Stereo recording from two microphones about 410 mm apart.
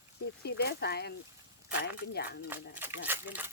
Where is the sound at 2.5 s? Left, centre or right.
Centre.